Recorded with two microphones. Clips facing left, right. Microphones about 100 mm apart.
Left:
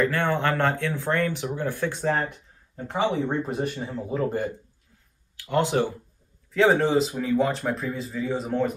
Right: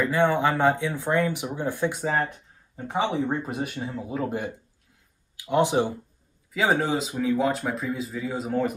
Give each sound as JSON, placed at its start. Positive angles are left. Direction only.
{"t": 0.0, "sound": "speech", "side_deg": -15}
{"t": 6.5, "sound": "speech", "side_deg": -5}